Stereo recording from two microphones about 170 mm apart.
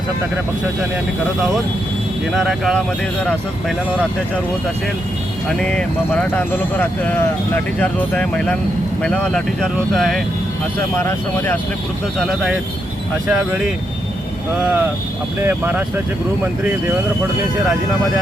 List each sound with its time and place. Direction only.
2.3 s speech: centre (ahead or behind)
5.5 s speech: 5° left (ahead or behind)
10.9 s speech: 10° left (ahead or behind)
13.2 s speech: 5° right (ahead or behind)